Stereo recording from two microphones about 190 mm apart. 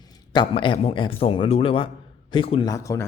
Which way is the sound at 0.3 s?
25° left (ahead or behind).